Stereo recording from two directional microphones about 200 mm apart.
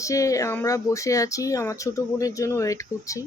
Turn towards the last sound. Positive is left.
turn(degrees=15)  # may be behind; listen again after turning